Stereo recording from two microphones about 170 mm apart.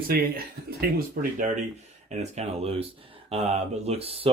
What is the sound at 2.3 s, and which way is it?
Speech, 40° right (ahead or behind).